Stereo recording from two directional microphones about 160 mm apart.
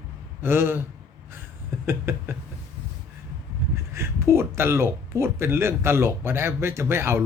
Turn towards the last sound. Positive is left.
turn(degrees=-15)  # may be behind; listen again after turning